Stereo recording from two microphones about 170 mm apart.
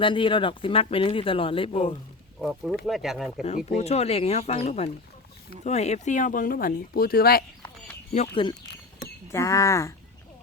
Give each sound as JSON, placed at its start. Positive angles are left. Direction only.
{"t": 0.0, "sound": "speech", "side_deg": 30}
{"t": 2.4, "sound": "speech", "side_deg": 0}
{"t": 3.7, "sound": "speech", "side_deg": 40}
{"t": 8.1, "sound": "speech", "side_deg": 40}
{"t": 9.3, "sound": "speech", "side_deg": 20}